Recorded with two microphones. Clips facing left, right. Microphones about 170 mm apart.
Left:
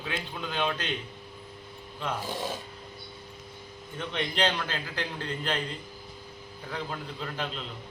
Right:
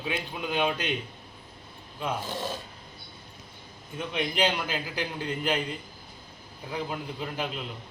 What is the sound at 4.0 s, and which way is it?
A man's voice, 10° right (ahead or behind).